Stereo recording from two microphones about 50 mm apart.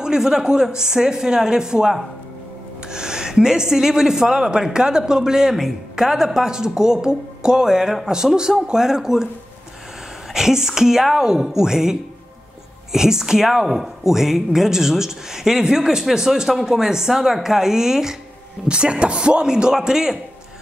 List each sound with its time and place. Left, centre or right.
0.0 s speech: centre
10.3 s speech: centre
18.7 s speech: centre